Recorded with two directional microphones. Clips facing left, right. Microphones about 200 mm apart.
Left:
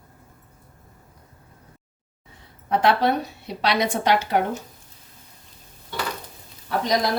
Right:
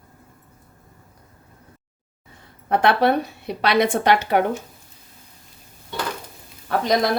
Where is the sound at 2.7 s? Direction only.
55° right (ahead or behind).